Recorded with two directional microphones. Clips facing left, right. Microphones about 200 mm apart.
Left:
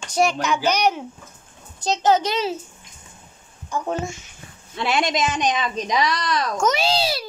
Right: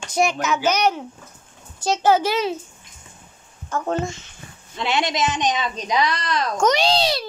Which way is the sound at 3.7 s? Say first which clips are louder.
Right 2 dB; 10° left (ahead or behind).